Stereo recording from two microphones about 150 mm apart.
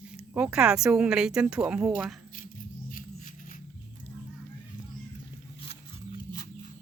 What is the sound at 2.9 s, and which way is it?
Music, 60° left (ahead or behind).